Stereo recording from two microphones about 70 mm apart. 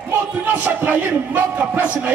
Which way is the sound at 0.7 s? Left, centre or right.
Right.